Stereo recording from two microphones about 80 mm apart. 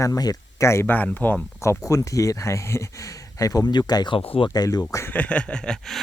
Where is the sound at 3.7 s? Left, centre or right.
Left.